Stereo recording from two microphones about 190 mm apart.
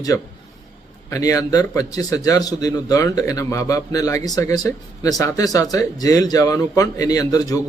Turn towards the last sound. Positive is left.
turn(degrees=20)  # may be behind; listen again after turning